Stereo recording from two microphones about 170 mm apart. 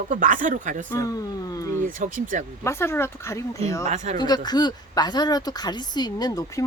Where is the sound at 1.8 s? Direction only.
50° right (ahead or behind).